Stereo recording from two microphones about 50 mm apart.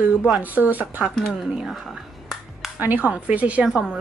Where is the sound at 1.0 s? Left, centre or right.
Centre.